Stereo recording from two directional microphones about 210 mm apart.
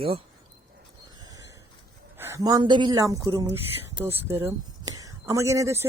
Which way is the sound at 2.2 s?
15° right (ahead or behind).